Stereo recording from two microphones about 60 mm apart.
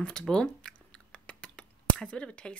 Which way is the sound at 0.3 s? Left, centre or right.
Centre.